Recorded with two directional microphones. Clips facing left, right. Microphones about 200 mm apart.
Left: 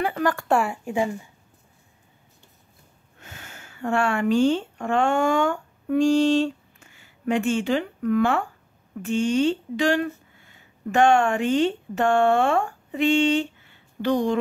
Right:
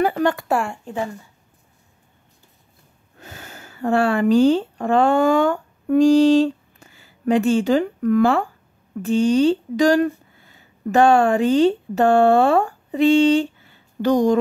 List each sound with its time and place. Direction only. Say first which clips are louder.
0.0 s speech: right 5 dB; 25° right (ahead or behind)
0.5 s speech: even; centre (ahead or behind)
3.2 s speech: right 5 dB; 35° right (ahead or behind)